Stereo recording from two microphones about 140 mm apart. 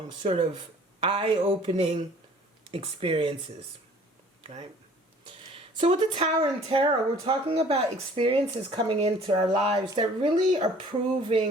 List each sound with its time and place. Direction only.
0.2 s speech: 35° right (ahead or behind)
5.5 s a sound: 40° right (ahead or behind)
6.3 s speech: 40° right (ahead or behind)